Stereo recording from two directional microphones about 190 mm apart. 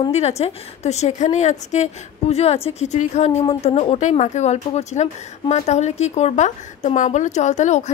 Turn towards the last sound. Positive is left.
turn(degrees=40)  # may be behind; listen again after turning